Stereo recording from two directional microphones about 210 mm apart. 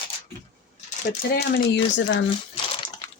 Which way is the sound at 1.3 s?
50° left (ahead or behind).